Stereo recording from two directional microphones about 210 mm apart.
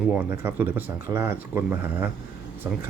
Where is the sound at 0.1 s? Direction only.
10° right (ahead or behind).